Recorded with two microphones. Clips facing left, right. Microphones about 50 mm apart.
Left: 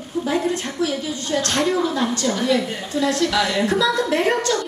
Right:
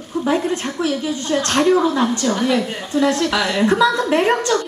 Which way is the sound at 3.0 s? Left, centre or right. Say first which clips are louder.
Right 2 dB; right.